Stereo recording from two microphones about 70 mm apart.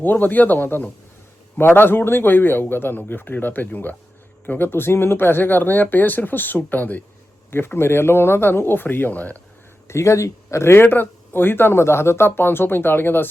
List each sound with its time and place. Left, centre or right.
0.0 s speech: left
9.8 s speech: left